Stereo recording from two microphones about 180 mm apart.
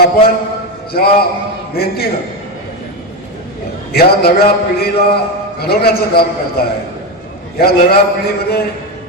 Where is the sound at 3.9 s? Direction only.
60° left (ahead or behind).